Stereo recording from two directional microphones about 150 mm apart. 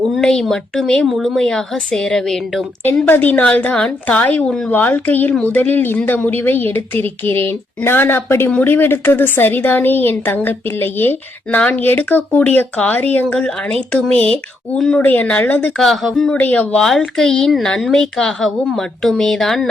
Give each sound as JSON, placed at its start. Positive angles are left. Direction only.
{"t": 0.1, "sound": "a woman's voice", "side_deg": 5}